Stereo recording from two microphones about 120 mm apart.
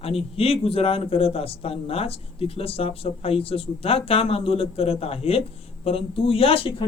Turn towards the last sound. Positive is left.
turn(degrees=50)  # may be behind; listen again after turning